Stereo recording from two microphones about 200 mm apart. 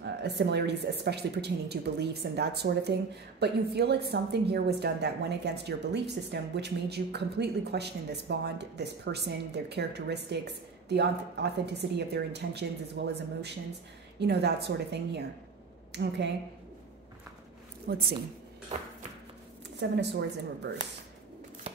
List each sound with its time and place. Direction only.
0.0 s a woman's voice: 55° right (ahead or behind)
17.9 s a woman's voice: 50° right (ahead or behind)
19.8 s a woman's voice: 60° right (ahead or behind)